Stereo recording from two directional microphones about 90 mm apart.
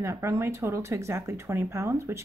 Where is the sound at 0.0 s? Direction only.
35° right (ahead or behind).